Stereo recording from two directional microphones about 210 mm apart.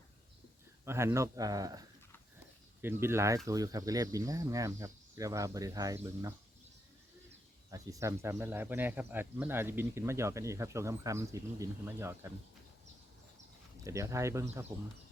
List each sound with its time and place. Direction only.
0.9 s speech: 10° right (ahead or behind)
7.7 s speech: 15° right (ahead or behind)
13.8 s speech: 15° right (ahead or behind)